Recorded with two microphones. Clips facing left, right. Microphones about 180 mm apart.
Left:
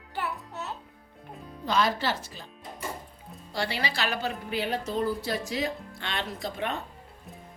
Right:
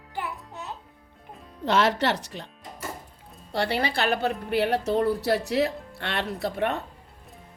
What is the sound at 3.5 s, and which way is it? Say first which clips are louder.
A woman's voice: right 5 dB; 60° right (ahead or behind).